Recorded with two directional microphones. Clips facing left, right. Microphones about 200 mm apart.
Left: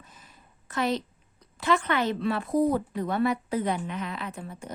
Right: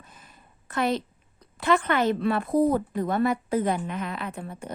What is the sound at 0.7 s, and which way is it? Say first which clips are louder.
A woman's voice: right 2 dB; 55° right (ahead or behind).